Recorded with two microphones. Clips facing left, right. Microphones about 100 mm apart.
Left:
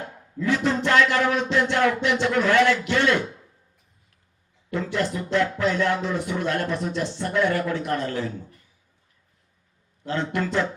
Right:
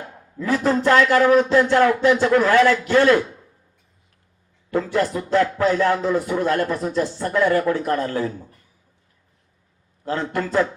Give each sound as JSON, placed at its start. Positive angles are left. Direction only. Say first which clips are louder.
{"t": 0.3, "sound": "speech", "louder": "right 3 dB", "side_deg": -40}
{"t": 4.7, "sound": "speech", "louder": "right 5 dB", "side_deg": -40}
{"t": 10.1, "sound": "speech", "louder": "right 2 dB", "side_deg": -40}